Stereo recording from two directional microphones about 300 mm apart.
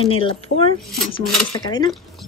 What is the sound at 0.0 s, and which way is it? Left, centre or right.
Speech, centre.